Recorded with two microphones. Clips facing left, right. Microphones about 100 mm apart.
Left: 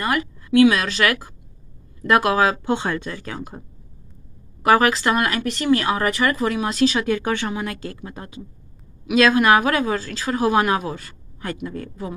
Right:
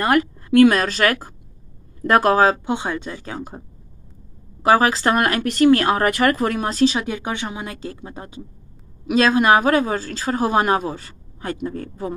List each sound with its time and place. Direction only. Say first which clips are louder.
0.0 s a woman's voice: right 5 dB; 50° right (ahead or behind)
2.6 s speech: left 1 dB; 15° right (ahead or behind)
4.6 s speech: right 1 dB; 30° right (ahead or behind)